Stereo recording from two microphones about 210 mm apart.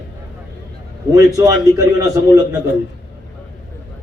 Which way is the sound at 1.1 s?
15° right (ahead or behind).